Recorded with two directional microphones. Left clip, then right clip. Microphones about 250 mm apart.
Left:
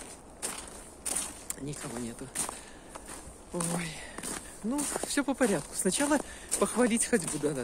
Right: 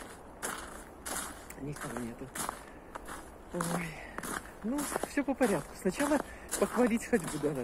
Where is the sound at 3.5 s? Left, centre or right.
Centre.